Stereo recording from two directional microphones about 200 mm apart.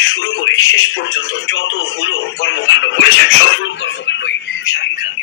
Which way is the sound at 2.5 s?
75° left (ahead or behind).